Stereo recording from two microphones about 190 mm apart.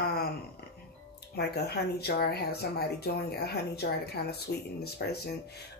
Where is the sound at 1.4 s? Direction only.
60° left (ahead or behind).